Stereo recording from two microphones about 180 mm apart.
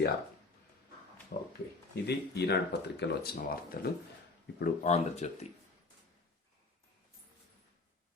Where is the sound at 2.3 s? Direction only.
65° left (ahead or behind).